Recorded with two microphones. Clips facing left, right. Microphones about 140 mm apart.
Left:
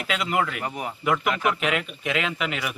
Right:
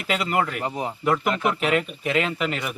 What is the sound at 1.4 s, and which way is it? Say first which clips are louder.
Speech: right 2 dB; 35° right (ahead or behind).